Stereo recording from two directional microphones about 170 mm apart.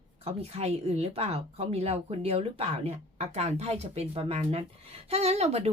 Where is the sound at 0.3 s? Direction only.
35° right (ahead or behind).